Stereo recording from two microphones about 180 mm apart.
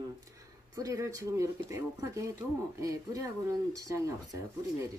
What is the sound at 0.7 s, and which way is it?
Speech, 20° right (ahead or behind).